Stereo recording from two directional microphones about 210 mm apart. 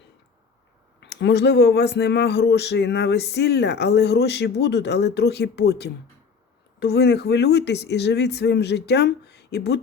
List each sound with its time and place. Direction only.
0.9 s speech: 55° left (ahead or behind)